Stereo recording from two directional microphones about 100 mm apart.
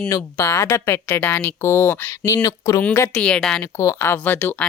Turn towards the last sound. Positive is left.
turn(degrees=20)  # may be behind; listen again after turning